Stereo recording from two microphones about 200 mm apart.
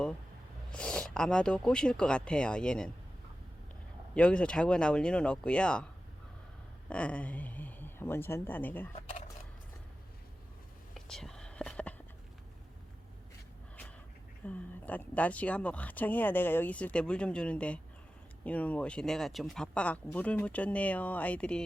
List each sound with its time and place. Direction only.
0.7 s speech: 5° left (ahead or behind)
4.1 s speech: 5° left (ahead or behind)
6.9 s speech: 5° left (ahead or behind)
10.9 s whispering: centre (ahead or behind)
14.4 s speech: 10° left (ahead or behind)